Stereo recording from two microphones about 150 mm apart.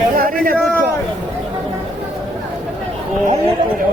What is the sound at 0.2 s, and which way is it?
Speech, 70° right (ahead or behind).